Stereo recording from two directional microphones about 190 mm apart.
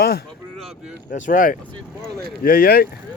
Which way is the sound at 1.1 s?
40° left (ahead or behind).